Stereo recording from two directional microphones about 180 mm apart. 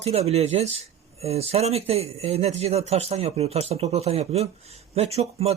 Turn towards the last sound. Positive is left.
turn(degrees=-35)  # may be behind; listen again after turning